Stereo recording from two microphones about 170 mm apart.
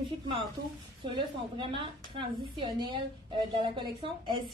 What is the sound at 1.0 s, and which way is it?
A woman's voice, 30° right (ahead or behind).